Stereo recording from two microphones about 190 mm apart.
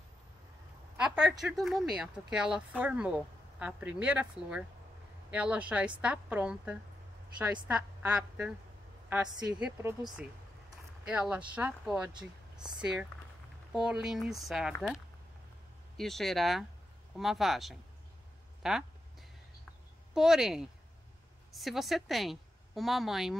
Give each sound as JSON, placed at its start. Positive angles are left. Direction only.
{"t": 1.0, "sound": "a sound", "side_deg": -5}
{"t": 1.4, "sound": "a woman's voice", "side_deg": 0}
{"t": 12.1, "sound": "speech", "side_deg": -25}
{"t": 13.7, "sound": "a woman's voice", "side_deg": -5}
{"t": 16.0, "sound": "a woman's voice", "side_deg": 0}
{"t": 20.2, "sound": "a woman's voice", "side_deg": 0}